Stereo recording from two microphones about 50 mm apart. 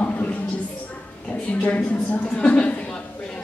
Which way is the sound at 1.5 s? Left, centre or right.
Left.